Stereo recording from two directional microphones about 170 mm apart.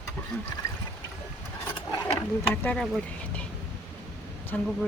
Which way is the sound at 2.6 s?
5° left (ahead or behind).